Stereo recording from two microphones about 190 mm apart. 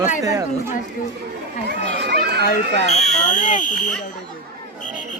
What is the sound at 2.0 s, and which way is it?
Children playing, 60° right (ahead or behind).